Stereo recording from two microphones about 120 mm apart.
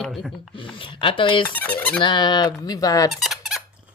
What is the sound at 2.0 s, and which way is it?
Speech, 40° left (ahead or behind).